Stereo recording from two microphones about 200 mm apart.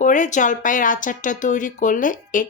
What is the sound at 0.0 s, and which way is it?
Speech, 40° left (ahead or behind).